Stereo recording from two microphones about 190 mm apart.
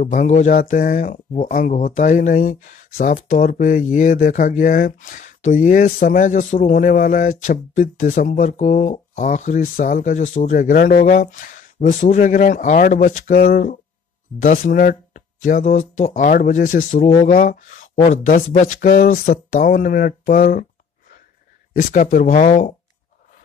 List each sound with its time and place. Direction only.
0.0 s speech: 40° left (ahead or behind)
21.9 s speech: 40° left (ahead or behind)